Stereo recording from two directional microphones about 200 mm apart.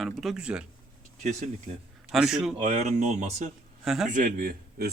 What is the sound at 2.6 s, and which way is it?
Speech, 35° right (ahead or behind).